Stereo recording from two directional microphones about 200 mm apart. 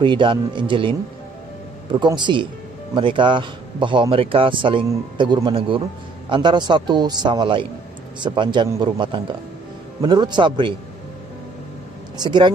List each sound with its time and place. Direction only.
0.0 s speech: 25° right (ahead or behind)
12.2 s speech: 20° right (ahead or behind)